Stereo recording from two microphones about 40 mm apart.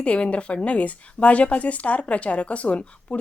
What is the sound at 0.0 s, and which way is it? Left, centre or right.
A woman's voice, left.